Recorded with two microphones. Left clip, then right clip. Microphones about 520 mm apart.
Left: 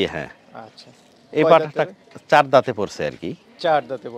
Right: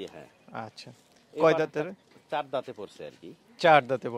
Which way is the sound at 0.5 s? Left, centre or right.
Right.